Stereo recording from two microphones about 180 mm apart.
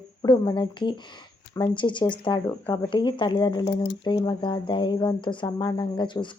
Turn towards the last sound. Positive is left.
turn(degrees=25)  # may be behind; listen again after turning